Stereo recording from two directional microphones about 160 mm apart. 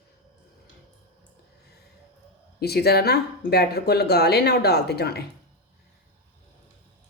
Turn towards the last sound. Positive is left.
turn(degrees=85)